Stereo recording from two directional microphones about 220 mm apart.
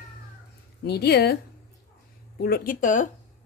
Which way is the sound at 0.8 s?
50° left (ahead or behind).